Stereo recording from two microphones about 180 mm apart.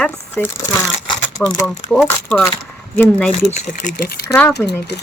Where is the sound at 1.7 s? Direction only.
5° left (ahead or behind).